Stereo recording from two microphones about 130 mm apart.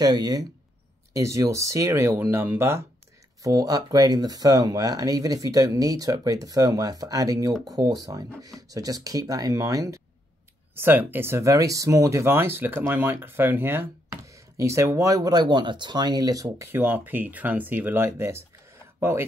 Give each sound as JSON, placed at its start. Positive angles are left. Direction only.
{"t": 0.0, "sound": "speech", "side_deg": -30}
{"t": 3.4, "sound": "speech", "side_deg": -30}
{"t": 10.8, "sound": "speech", "side_deg": -15}
{"t": 16.5, "sound": "speech", "side_deg": -15}